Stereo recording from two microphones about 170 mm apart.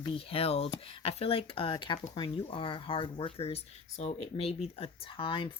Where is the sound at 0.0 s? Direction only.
30° left (ahead or behind).